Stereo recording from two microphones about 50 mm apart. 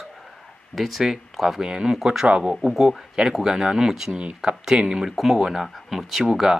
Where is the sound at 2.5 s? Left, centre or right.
Centre.